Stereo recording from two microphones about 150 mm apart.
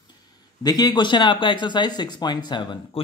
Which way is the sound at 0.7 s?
25° left (ahead or behind).